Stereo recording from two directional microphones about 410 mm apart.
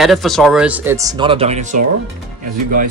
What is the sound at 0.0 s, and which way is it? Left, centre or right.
Speech, centre.